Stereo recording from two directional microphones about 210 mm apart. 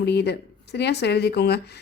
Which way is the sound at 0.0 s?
50° left (ahead or behind).